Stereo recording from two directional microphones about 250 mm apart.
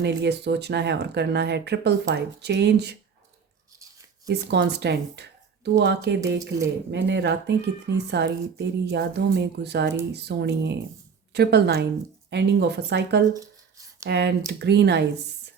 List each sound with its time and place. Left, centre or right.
0.0 s a woman's voice: right
4.3 s a woman's voice: right
13.3 s a sound: centre
14.1 s a woman's voice: right